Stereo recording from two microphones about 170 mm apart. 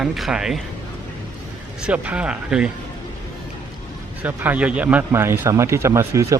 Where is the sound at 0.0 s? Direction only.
Centre (ahead or behind).